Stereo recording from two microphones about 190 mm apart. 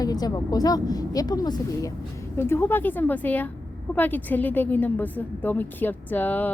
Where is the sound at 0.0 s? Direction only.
20° left (ahead or behind).